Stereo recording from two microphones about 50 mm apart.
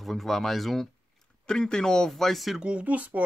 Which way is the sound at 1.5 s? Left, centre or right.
Centre.